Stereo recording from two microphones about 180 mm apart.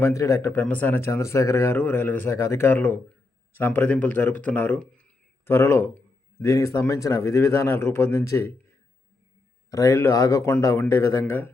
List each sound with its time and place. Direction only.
0.0 s speech: 15° left (ahead or behind)
9.6 s speech: 15° left (ahead or behind)